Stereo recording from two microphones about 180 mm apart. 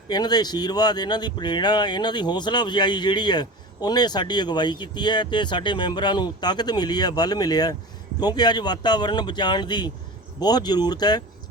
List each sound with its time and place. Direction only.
0.1 s speech: 25° left (ahead or behind)